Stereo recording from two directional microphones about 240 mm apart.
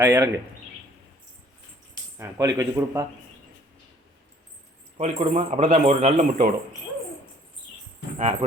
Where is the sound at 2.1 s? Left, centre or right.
Centre.